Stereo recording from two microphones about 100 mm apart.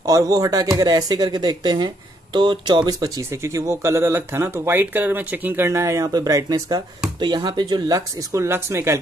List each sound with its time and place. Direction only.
0.0 s speech: 40° right (ahead or behind)
7.2 s speech: 45° right (ahead or behind)
8.3 s speech: 25° right (ahead or behind)